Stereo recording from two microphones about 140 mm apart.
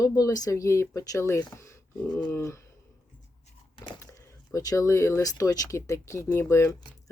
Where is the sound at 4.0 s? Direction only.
20° left (ahead or behind).